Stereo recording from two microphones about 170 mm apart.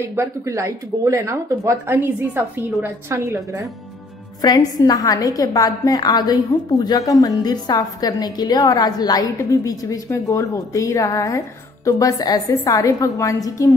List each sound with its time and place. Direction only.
0.1 s speech: 15° right (ahead or behind)
4.4 s a woman's voice: 20° left (ahead or behind)